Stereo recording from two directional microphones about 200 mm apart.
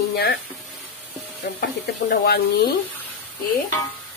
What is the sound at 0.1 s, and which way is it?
Speech, 50° left (ahead or behind).